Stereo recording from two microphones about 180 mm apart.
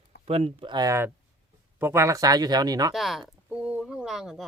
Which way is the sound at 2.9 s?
Centre (ahead or behind).